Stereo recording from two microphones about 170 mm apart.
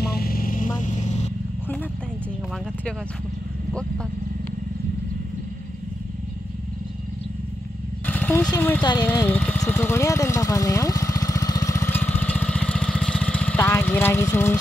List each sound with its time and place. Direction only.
0.0 s vehicle: 60° left (ahead or behind); by 1.3 s 45° left (ahead or behind)
8.1 s a sound: 10° left (ahead or behind)
8.5 s speech: 10° left (ahead or behind)
9.6 s vehicle: 10° left (ahead or behind)